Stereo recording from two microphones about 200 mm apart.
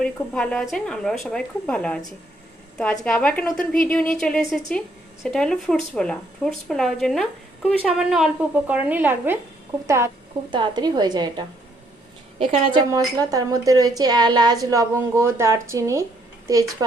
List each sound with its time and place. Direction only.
0.0 s a woman's voice: 5° left (ahead or behind); by 16.0 s 15° right (ahead or behind)